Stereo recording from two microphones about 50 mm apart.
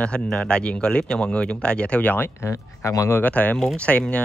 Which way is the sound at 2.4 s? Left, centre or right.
Left.